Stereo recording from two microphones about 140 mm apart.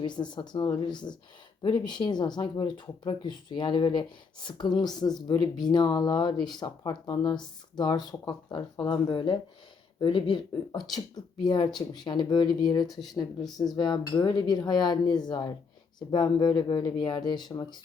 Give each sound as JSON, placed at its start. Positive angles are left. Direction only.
{"t": 0.0, "sound": "speech", "side_deg": 30}